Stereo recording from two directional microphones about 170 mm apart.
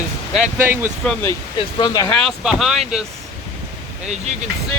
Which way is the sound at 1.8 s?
25° left (ahead or behind).